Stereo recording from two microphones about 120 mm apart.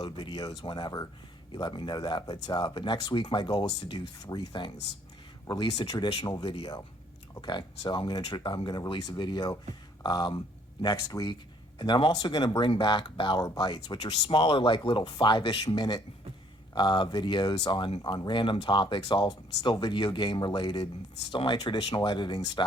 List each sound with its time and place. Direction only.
0.0 s speech: 40° left (ahead or behind)